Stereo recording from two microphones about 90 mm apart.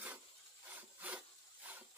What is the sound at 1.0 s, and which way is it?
Wood, 15° right (ahead or behind).